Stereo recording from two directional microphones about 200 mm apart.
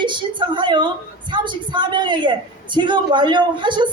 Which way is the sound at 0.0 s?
25° right (ahead or behind).